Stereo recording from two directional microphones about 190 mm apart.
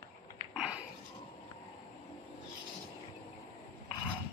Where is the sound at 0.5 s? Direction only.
5° right (ahead or behind).